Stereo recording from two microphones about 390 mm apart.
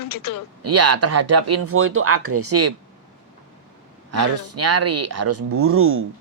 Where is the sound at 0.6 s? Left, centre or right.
Right.